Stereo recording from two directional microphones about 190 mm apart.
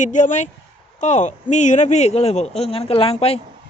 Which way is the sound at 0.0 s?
40° left (ahead or behind).